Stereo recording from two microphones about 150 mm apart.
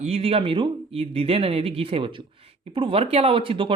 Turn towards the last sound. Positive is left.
turn(degrees=-35)  # may be behind; listen again after turning